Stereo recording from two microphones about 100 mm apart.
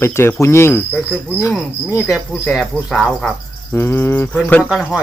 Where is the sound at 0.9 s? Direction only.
5° left (ahead or behind).